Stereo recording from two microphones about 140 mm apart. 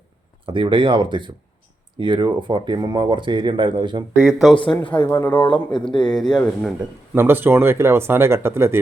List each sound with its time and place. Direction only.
0.4 s speech: 35° right (ahead or behind)
4.2 s speech: 5° right (ahead or behind)
5.0 s speech: 15° left (ahead or behind)
5.5 s speech: 35° left (ahead or behind)
6.1 s speech: 5° left (ahead or behind)
7.2 s speech: 15° right (ahead or behind)